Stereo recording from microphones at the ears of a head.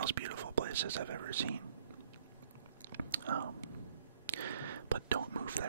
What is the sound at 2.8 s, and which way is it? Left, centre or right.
Chewing, right.